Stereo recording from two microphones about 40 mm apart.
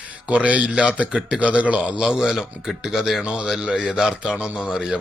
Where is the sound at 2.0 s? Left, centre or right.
Centre.